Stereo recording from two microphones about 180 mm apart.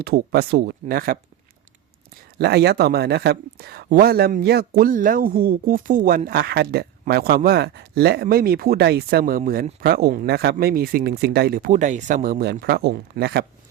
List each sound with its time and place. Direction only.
0.0 s speech: 60° right (ahead or behind)
2.4 s speech: 65° right (ahead or behind)